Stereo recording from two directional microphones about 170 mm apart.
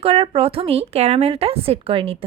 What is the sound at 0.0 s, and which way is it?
A woman's voice, 35° right (ahead or behind).